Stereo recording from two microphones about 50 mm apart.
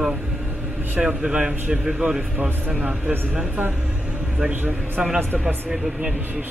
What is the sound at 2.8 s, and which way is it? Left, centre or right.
Speech, right.